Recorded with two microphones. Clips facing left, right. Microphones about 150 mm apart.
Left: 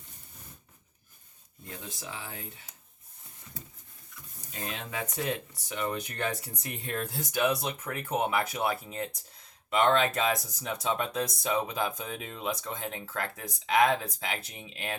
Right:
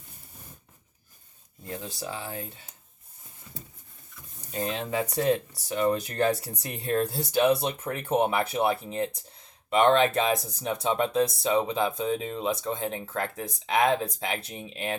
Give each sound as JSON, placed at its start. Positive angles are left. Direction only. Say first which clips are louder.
{"t": 1.6, "sound": "speech", "louder": "right 7 dB", "side_deg": -35}
{"t": 4.5, "sound": "speech", "louder": "right 8 dB", "side_deg": -30}